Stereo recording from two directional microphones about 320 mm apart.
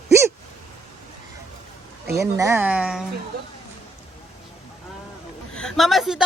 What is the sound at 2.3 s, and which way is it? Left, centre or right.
Speech, centre.